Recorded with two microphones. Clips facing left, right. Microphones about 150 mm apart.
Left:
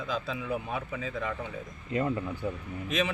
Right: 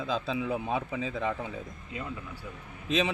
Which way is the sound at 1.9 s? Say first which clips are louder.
Left 10 dB; 55° left (ahead or behind).